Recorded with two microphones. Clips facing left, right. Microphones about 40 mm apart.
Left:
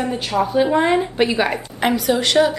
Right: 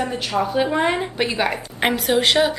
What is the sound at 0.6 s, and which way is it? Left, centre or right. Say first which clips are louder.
Speech: left 4 dB; right.